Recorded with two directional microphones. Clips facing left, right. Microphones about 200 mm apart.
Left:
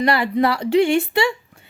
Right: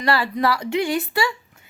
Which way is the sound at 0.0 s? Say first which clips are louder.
Left 3 dB; 20° left (ahead or behind).